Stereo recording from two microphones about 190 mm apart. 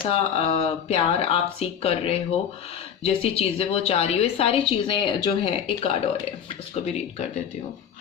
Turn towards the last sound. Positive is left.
turn(degrees=35)  # may be behind; listen again after turning